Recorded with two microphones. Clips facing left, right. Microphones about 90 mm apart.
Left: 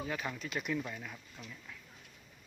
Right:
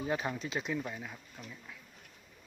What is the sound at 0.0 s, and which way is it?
Speech, 30° right (ahead or behind).